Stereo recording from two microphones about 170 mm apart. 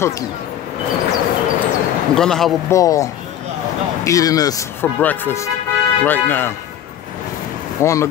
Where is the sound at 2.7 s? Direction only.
20° left (ahead or behind).